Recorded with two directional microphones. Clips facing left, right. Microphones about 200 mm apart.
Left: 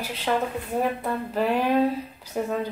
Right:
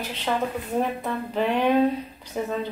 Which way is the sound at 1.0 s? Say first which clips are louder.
Even; 5° left (ahead or behind).